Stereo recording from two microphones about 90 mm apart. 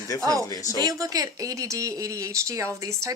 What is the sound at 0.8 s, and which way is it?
Speech, 40° right (ahead or behind).